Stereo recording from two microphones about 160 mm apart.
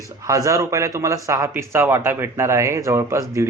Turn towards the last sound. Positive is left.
turn(degrees=-20)  # may be behind; listen again after turning